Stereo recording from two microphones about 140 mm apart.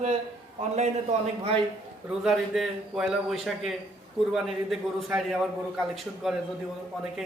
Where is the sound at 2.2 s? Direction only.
5° right (ahead or behind).